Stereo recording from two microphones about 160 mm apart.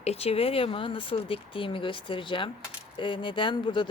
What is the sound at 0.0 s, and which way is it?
Speech, 40° left (ahead or behind).